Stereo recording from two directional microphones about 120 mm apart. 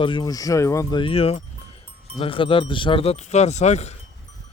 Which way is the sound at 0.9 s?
50° left (ahead or behind).